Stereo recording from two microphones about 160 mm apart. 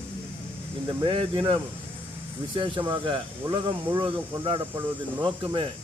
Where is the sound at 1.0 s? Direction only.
35° right (ahead or behind).